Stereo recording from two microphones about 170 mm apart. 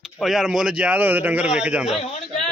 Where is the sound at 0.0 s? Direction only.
Centre (ahead or behind).